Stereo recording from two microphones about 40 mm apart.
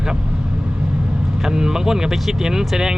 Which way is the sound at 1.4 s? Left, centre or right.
Centre.